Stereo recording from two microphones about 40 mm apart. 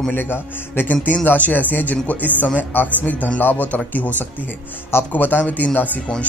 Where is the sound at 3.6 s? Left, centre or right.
Left.